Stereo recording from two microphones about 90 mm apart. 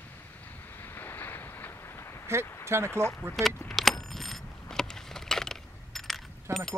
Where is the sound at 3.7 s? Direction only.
Centre (ahead or behind).